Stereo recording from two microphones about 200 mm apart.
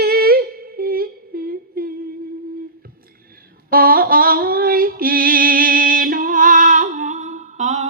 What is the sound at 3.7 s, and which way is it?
Female singing, 45° right (ahead or behind).